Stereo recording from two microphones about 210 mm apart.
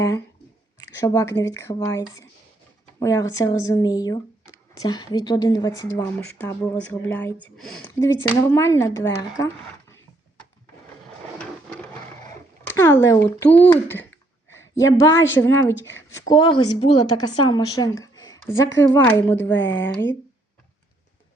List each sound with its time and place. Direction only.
0.8 s a woman's voice: 15° left (ahead or behind)
11.3 s a sound: 5° left (ahead or behind)
12.6 s a woman's voice: 10° left (ahead or behind)